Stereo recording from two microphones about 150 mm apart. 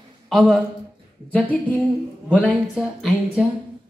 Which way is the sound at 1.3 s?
10° left (ahead or behind).